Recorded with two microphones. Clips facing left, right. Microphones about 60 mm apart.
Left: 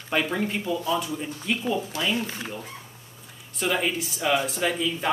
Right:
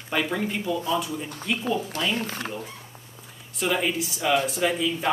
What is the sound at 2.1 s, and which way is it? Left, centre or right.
Speech, right.